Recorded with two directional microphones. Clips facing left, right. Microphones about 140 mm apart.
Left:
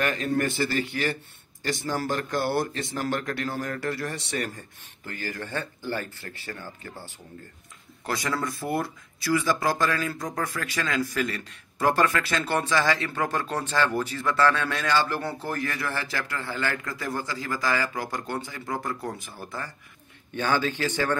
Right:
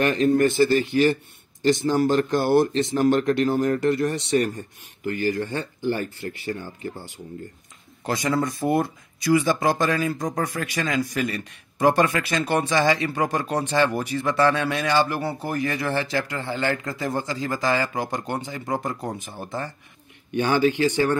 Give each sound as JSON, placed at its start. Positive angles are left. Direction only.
{"t": 0.0, "sound": "speech", "side_deg": -25}
{"t": 5.5, "sound": "speech", "side_deg": -20}
{"t": 8.0, "sound": "speech", "side_deg": -20}